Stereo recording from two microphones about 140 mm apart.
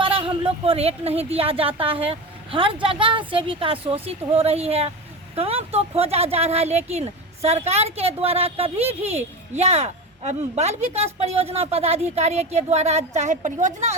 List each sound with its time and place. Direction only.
0.0 s speech: 40° right (ahead or behind); by 13.9 s 60° right (ahead or behind)